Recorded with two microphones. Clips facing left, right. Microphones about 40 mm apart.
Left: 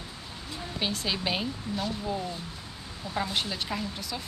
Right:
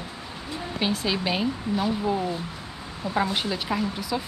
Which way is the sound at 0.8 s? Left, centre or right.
Centre.